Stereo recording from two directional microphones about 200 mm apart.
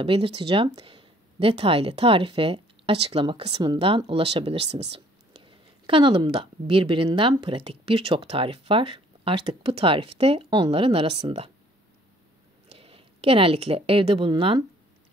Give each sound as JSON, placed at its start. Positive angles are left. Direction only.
{"t": 0.0, "sound": "a woman's voice", "side_deg": -25}
{"t": 12.6, "sound": "a woman's voice", "side_deg": -30}